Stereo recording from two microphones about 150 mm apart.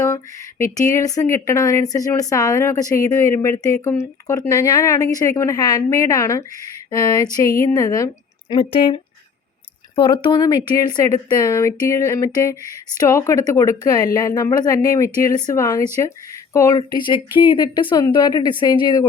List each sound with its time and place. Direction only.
0.0 s a woman's voice: 20° left (ahead or behind)